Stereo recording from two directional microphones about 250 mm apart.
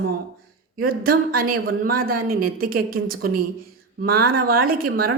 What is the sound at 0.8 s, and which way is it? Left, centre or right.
A man's voice, right.